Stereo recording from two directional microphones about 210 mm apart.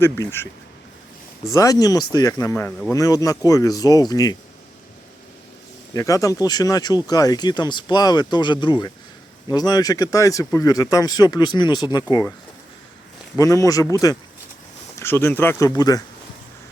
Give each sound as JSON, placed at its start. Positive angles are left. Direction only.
{"t": 0.0, "sound": "speech", "side_deg": 10}
{"t": 1.5, "sound": "speech", "side_deg": 15}
{"t": 5.9, "sound": "speech", "side_deg": 15}
{"t": 13.4, "sound": "speech", "side_deg": 15}
{"t": 14.9, "sound": "speech", "side_deg": 10}